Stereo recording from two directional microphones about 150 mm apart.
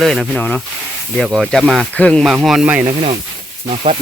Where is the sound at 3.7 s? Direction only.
45° right (ahead or behind).